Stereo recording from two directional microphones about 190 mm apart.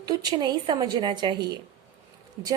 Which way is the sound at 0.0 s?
20° right (ahead or behind).